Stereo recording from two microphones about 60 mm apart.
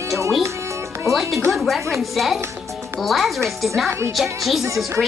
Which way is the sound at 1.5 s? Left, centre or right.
Centre.